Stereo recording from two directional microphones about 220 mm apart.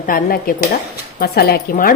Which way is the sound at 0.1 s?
40° left (ahead or behind).